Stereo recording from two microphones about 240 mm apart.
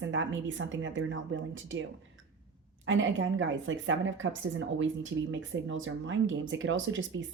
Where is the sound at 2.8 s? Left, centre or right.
Right.